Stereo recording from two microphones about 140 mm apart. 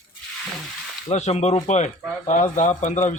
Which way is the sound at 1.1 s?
50° left (ahead or behind).